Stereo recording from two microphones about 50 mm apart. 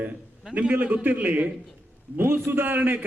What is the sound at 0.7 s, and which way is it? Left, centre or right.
Speech, right.